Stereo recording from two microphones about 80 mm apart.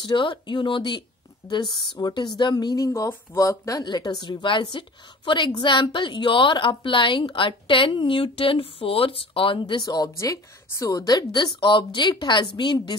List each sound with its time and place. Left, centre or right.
0.0 s speech: left
1.5 s speech: left
2.5 s speech: left
3.8 s a woman's voice: left
9.8 s speech: left
10.1 s speech: left
11.3 s a woman's voice: left